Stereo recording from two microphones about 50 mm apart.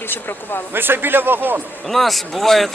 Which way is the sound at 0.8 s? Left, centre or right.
Right.